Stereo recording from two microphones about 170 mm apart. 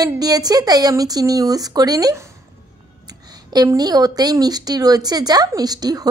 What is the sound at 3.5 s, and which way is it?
A woman's voice, 20° right (ahead or behind).